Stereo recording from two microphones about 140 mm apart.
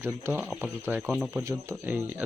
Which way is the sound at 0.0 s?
15° right (ahead or behind).